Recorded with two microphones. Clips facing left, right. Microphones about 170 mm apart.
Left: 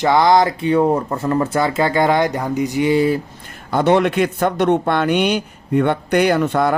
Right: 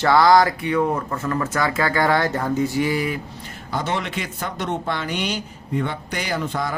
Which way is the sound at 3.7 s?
60° left (ahead or behind).